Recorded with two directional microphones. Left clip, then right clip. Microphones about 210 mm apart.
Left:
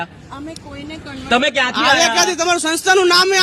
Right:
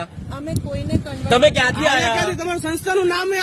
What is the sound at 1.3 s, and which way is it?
Speech, 65° right (ahead or behind).